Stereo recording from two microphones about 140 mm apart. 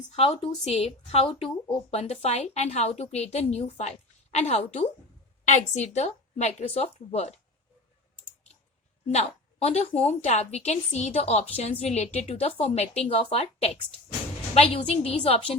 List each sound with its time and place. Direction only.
0.2 s a woman's voice: 50° left (ahead or behind)
9.0 s a woman's voice: 50° left (ahead or behind)